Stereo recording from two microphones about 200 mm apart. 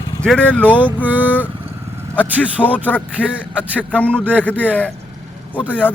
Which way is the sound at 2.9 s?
10° left (ahead or behind).